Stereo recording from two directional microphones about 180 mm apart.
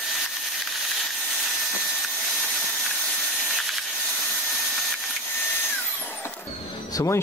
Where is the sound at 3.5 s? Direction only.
Centre (ahead or behind).